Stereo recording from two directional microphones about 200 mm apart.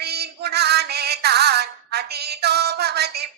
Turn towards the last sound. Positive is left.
turn(degrees=-55)  # may be behind; listen again after turning